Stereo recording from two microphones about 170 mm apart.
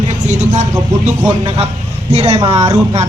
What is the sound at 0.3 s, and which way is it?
Speech, 45° right (ahead or behind).